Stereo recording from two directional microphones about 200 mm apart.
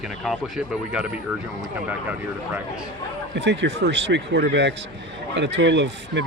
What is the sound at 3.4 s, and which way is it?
Speech, 60° right (ahead or behind).